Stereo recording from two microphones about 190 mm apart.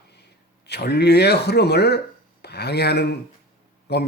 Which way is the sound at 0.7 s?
60° left (ahead or behind).